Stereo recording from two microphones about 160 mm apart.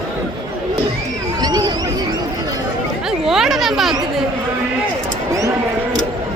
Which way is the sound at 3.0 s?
Centre (ahead or behind).